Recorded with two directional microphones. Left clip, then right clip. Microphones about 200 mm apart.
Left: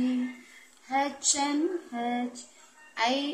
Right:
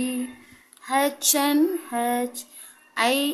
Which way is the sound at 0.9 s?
40° right (ahead or behind).